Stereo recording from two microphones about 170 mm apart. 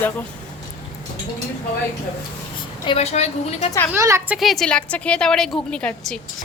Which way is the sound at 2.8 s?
35° left (ahead or behind).